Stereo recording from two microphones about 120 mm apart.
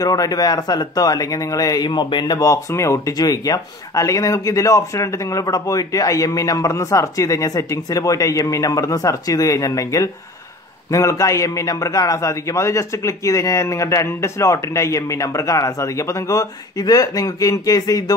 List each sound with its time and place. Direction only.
0.0 s speech: 30° left (ahead or behind)
1.9 s speech: 40° left (ahead or behind)